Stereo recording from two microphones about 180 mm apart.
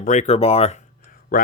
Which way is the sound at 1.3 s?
50° left (ahead or behind).